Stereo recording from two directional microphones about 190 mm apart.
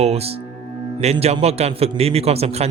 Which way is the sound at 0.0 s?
35° right (ahead or behind).